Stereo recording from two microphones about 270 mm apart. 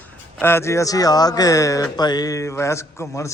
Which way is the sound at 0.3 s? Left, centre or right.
Centre.